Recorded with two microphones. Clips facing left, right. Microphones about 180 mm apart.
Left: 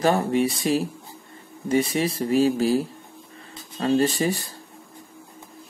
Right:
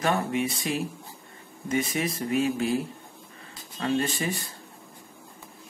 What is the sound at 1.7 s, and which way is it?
Speech, 30° left (ahead or behind).